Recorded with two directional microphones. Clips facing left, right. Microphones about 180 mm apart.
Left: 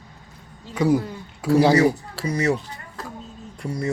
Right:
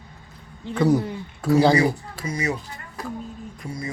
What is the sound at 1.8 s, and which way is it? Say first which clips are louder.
Speech: left 3 dB; 70° left (ahead or behind).